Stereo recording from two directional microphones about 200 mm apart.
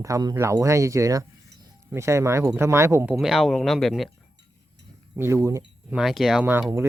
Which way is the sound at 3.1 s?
Centre (ahead or behind).